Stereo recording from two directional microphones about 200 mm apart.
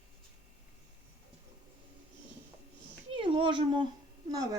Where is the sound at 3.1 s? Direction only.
25° right (ahead or behind).